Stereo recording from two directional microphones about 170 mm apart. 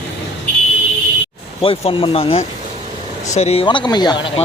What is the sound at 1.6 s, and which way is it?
Speech, 35° left (ahead or behind).